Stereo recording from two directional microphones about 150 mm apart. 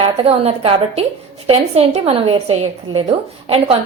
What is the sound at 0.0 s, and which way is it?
A woman's voice, 40° right (ahead or behind).